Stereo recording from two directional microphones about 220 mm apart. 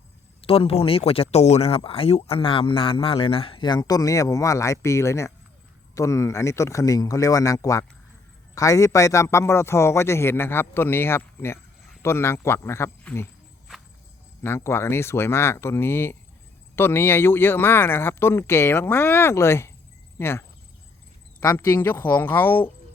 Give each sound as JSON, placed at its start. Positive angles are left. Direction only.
{"t": 0.4, "sound": "a man's voice", "side_deg": 25}
{"t": 14.4, "sound": "a man's voice", "side_deg": 10}
{"t": 21.4, "sound": "a man's voice", "side_deg": 15}